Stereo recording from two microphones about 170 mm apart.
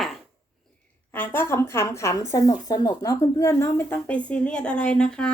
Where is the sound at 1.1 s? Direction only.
10° left (ahead or behind).